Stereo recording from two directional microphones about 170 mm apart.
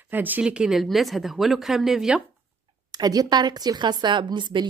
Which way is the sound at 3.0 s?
25° right (ahead or behind).